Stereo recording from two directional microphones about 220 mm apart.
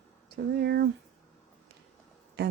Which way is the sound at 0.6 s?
50° right (ahead or behind).